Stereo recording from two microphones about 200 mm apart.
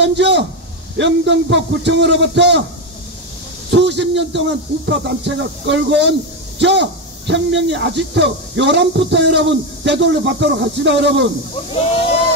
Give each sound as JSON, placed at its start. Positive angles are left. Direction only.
{"t": 0.0, "sound": "a man's voice", "side_deg": -60}
{"t": 3.7, "sound": "a man's voice", "side_deg": -60}